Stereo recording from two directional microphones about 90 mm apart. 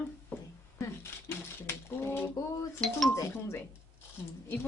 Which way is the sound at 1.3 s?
30° left (ahead or behind).